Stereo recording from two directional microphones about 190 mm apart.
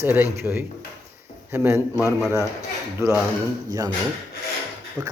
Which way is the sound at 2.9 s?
15° right (ahead or behind).